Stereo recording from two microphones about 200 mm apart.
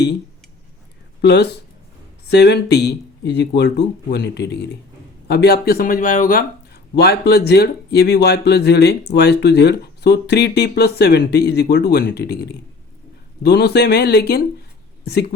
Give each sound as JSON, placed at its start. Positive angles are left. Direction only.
{"t": 1.2, "sound": "speech", "side_deg": 55}
{"t": 6.9, "sound": "speech", "side_deg": 55}